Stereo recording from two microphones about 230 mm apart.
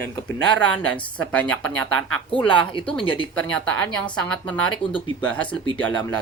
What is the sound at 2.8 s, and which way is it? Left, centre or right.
Speech, centre.